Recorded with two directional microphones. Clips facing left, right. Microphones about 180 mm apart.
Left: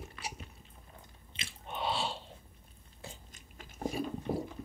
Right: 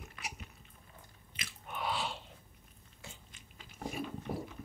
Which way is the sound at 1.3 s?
25° left (ahead or behind).